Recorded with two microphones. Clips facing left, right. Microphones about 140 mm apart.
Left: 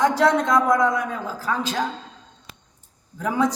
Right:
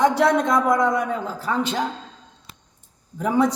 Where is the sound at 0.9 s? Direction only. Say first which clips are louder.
Right 2 dB; 60° right (ahead or behind).